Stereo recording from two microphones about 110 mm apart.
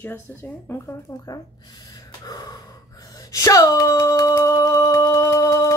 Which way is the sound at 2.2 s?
35° left (ahead or behind).